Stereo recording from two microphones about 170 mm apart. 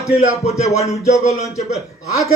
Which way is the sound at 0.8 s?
20° left (ahead or behind).